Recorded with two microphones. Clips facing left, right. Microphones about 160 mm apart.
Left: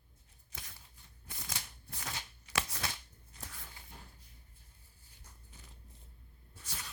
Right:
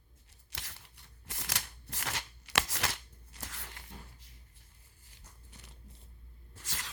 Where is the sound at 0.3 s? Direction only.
85° right.